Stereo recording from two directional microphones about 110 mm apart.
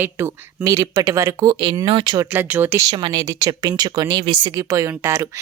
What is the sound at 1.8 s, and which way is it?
Speech, 55° right (ahead or behind).